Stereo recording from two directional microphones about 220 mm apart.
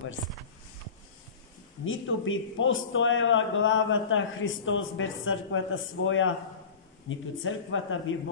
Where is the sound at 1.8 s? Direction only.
65° left (ahead or behind).